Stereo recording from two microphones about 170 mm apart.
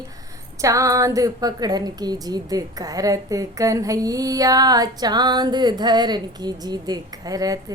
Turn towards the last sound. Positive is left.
turn(degrees=-20)  # may be behind; listen again after turning